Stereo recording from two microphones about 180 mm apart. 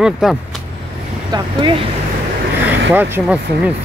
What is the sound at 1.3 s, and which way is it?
Speech, 30° right (ahead or behind).